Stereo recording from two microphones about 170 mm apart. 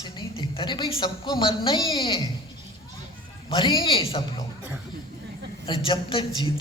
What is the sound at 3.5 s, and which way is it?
Speech, 30° left (ahead or behind).